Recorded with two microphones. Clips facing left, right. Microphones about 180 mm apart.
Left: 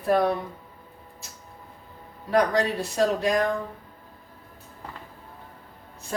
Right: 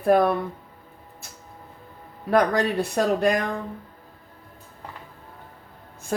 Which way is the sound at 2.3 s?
60° right (ahead or behind).